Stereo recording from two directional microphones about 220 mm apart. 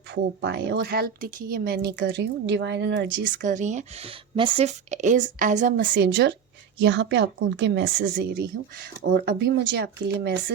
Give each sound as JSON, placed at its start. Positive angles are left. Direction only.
{"t": 0.1, "sound": "a woman's voice", "side_deg": -50}
{"t": 3.3, "sound": "speech", "side_deg": -35}
{"t": 5.8, "sound": "a woman's voice", "side_deg": -55}